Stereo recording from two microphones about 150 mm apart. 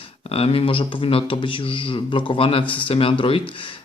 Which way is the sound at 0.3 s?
40° left (ahead or behind).